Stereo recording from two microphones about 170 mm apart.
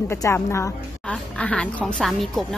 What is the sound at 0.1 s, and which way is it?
Speech, 15° left (ahead or behind).